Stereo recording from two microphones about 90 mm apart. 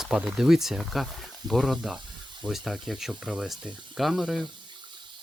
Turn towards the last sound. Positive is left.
turn(degrees=0)  # may be behind; listen again after turning